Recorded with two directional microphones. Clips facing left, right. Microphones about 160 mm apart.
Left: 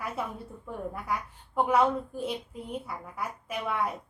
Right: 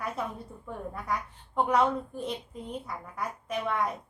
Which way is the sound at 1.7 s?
5° left (ahead or behind).